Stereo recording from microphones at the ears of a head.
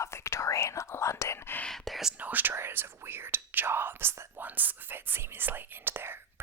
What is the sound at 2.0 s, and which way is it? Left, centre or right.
Speech, right.